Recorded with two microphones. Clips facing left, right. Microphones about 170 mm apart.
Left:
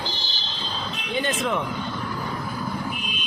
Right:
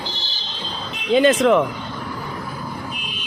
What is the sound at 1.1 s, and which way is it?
Speech, 90° right.